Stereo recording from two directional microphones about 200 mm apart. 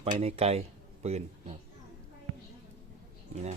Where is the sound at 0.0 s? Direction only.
30° right (ahead or behind).